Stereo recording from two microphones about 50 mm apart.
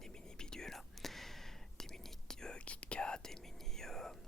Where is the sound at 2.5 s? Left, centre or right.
Left.